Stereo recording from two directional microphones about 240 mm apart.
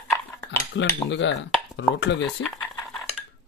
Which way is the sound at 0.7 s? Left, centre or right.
Left.